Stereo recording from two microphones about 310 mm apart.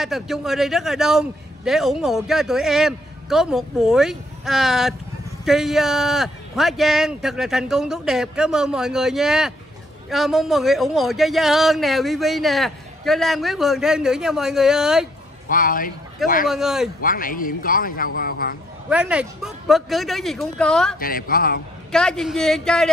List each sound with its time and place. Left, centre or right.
0.0 s a man's voice: centre
15.5 s a man's voice: left
16.4 s a man's voice: centre
17.0 s a man's voice: left
18.9 s a man's voice: centre
21.0 s a man's voice: left
21.9 s a man's voice: centre